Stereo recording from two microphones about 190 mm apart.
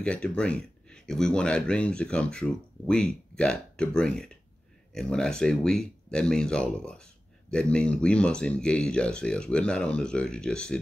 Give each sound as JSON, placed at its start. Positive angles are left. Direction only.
{"t": 0.0, "sound": "speech", "side_deg": 5}